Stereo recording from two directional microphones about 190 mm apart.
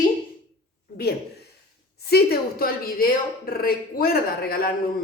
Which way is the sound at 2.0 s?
55° left (ahead or behind).